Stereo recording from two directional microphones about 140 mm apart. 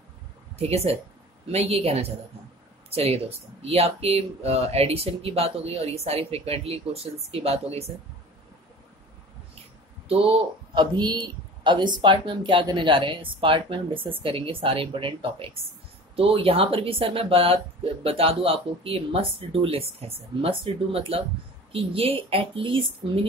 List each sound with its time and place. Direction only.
0.6 s speech: 45° right (ahead or behind)
10.0 s speech: 40° right (ahead or behind)